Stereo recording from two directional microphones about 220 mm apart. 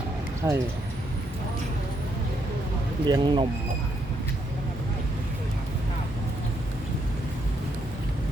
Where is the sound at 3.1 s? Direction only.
20° right (ahead or behind).